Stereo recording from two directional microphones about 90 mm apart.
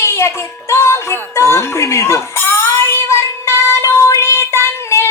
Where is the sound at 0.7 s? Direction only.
30° left (ahead or behind).